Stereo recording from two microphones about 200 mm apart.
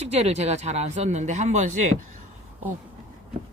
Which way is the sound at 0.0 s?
35° right (ahead or behind).